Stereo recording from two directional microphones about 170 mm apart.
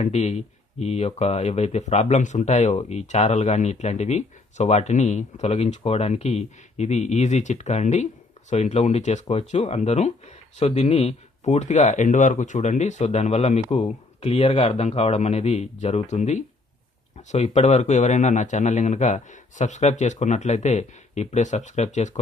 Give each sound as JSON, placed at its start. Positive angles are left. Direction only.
{"t": 0.0, "sound": "a man's voice", "side_deg": 40}